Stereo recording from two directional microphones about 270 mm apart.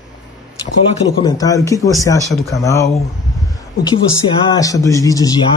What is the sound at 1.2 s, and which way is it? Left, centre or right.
Speech, centre.